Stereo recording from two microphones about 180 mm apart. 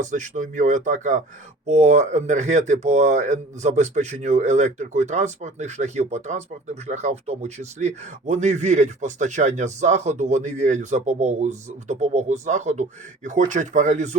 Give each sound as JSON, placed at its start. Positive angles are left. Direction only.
{"t": 0.0, "sound": "a man's voice", "side_deg": -45}